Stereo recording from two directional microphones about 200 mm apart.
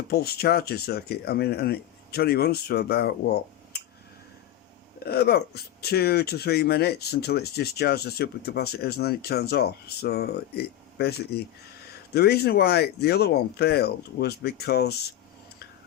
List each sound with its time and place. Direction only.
0.1 s speech: 50° left (ahead or behind)
5.0 s speech: 50° left (ahead or behind)